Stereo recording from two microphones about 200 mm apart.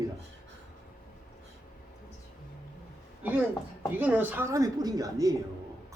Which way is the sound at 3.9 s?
10° right (ahead or behind).